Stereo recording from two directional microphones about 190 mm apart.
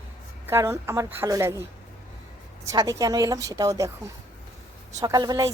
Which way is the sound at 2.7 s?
20° right (ahead or behind).